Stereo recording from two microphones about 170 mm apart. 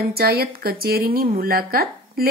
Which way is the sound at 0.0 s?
65° right (ahead or behind).